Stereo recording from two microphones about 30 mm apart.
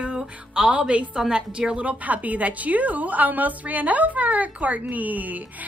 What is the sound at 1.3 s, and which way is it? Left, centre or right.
A woman's voice, right.